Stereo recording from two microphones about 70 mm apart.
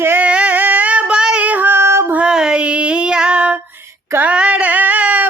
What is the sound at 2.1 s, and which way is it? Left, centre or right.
Female singing, centre.